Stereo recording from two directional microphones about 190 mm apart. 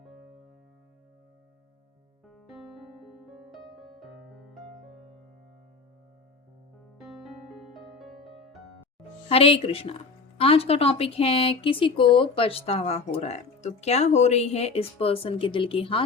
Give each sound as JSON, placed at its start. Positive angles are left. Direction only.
{"t": 3.1, "sound": "music", "side_deg": 0}
{"t": 7.7, "sound": "music", "side_deg": 0}
{"t": 9.3, "sound": "a woman's voice", "side_deg": 30}